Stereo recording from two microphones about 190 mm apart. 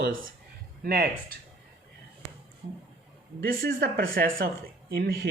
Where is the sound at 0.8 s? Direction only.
55° right (ahead or behind).